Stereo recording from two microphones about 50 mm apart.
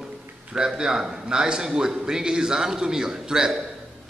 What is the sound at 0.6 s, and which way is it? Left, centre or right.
A man's voice, centre.